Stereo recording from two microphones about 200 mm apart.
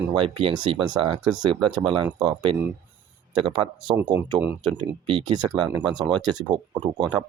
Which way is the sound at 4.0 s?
10° right (ahead or behind).